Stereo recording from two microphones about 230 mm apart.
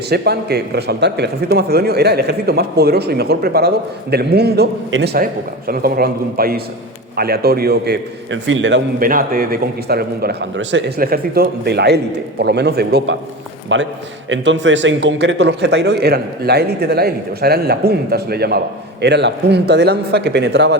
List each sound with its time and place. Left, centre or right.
0.1 s a man's voice: right
9.0 s a man's voice: right